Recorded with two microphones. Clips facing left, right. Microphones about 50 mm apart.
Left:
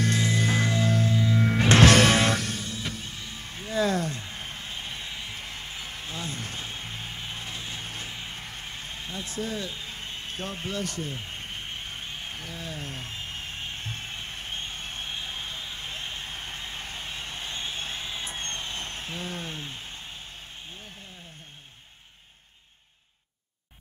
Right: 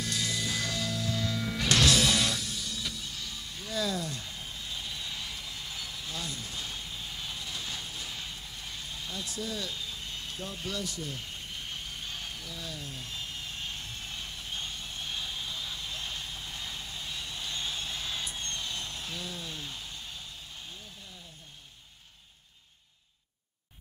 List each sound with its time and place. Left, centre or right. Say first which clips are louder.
0.0 s music: left 8 dB; left
1.1 s music: left 7 dB; left
1.4 s music: left 8 dB; left
2.6 s music: left 3 dB; left
3.9 s a sound: left 6 dB; left
6.4 s music: left 3 dB; left
7.9 s a sound: left 3 dB; left
8.4 s vehicle: left 5 dB; left
8.6 s a sound: left 3 dB; left
12.4 s music: left 4 dB; left
15.0 s vehicle: right 1 dB; left
16.8 s a sound: left 3 dB; left